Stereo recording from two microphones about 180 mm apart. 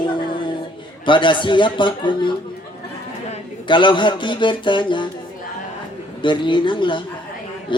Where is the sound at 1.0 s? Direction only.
25° left (ahead or behind).